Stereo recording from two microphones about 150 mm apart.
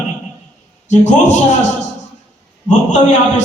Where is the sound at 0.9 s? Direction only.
55° left (ahead or behind).